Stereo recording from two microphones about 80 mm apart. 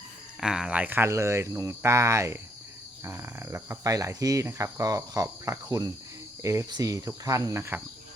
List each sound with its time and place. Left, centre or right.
0.3 s speech: centre
0.8 s speech: right